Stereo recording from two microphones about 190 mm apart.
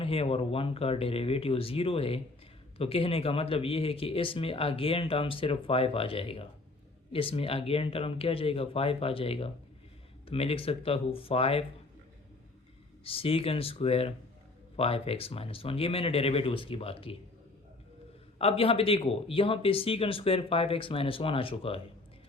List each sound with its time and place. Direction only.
0.0 s speech: 30° left (ahead or behind)
13.1 s speech: 30° left (ahead or behind)
18.3 s speech: 30° left (ahead or behind)